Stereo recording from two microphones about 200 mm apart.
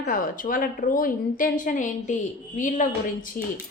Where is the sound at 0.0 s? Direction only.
45° left (ahead or behind).